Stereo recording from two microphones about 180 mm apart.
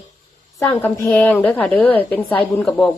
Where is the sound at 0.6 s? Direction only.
15° left (ahead or behind).